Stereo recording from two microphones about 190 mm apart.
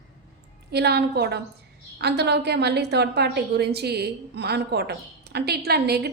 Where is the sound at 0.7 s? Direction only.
60° right (ahead or behind).